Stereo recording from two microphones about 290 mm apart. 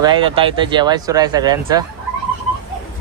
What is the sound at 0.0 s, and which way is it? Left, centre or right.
Speech, centre.